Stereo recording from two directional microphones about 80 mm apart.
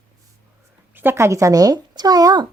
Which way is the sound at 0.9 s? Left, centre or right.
Right.